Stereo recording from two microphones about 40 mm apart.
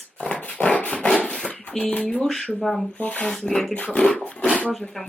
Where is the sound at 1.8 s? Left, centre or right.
Left.